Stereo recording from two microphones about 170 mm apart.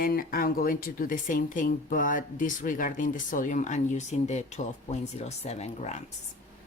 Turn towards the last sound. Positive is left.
turn(degrees=40)  # may be behind; listen again after turning